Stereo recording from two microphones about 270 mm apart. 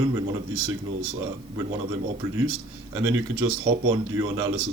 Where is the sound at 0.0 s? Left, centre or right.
Centre.